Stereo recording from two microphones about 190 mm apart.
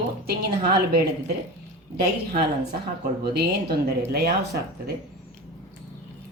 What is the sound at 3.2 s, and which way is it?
Speech, 55° right (ahead or behind).